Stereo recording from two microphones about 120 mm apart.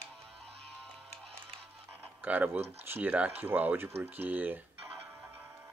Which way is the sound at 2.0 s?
15° right (ahead or behind).